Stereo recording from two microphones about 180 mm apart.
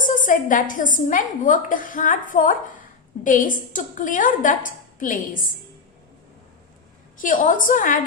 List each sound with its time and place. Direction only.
0.0 s a woman's voice: 45° left (ahead or behind)
7.2 s a woman's voice: 45° left (ahead or behind)